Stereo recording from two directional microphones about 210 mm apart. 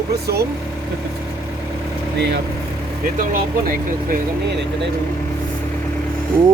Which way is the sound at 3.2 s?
40° right (ahead or behind).